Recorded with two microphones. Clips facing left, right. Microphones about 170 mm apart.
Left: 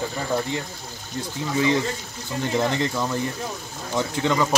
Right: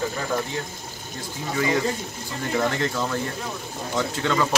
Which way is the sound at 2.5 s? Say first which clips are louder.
Even; 20° left (ahead or behind).